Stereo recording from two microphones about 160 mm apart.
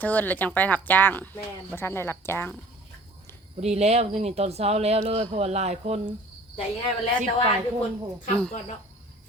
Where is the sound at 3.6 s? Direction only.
40° right (ahead or behind).